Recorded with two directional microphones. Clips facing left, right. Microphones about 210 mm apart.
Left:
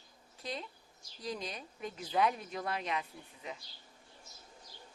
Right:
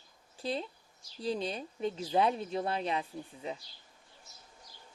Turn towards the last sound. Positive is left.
turn(degrees=-30)  # may be behind; listen again after turning